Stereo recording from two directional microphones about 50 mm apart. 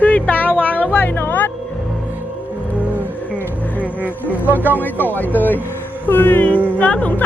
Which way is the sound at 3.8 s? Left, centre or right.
Right.